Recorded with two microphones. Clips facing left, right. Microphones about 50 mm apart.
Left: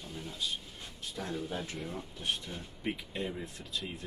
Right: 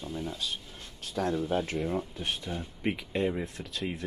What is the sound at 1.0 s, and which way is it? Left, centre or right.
Speech, right.